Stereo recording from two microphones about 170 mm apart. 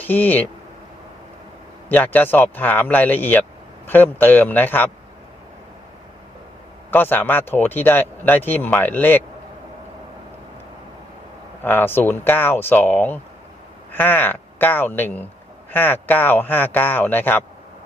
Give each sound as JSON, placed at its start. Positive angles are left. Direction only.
{"t": 0.0, "sound": "speech", "side_deg": 10}
{"t": 1.9, "sound": "speech", "side_deg": 10}
{"t": 6.9, "sound": "speech", "side_deg": 10}
{"t": 11.6, "sound": "speech", "side_deg": 10}